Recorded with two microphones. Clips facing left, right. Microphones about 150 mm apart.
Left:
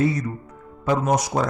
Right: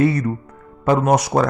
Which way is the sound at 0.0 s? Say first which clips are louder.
Right 5 dB; 65° right (ahead or behind).